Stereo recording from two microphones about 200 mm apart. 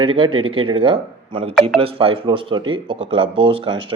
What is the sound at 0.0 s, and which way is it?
Speech, 25° right (ahead or behind).